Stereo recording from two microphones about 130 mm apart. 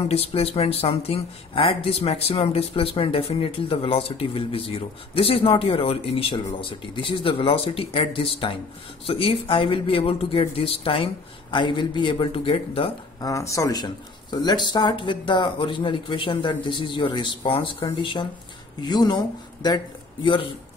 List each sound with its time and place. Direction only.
0.1 s speech: 50° left (ahead or behind)
13.2 s speech: 25° left (ahead or behind)